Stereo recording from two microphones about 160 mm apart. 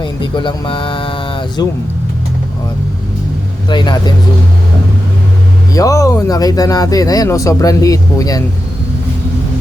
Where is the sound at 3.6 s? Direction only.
30° left (ahead or behind).